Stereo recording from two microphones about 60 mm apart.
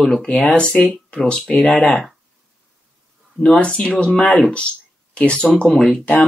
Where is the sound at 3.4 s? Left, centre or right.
Centre.